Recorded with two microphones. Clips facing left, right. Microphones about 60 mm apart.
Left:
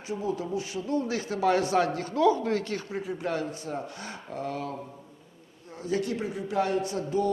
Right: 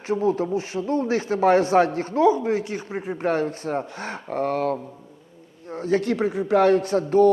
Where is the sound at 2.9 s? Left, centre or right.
Right.